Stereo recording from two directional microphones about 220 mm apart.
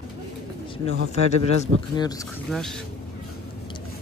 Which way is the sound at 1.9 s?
15° left (ahead or behind).